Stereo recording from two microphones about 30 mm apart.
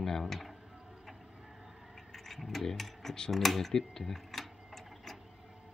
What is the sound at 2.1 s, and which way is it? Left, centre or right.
Vehicle, centre.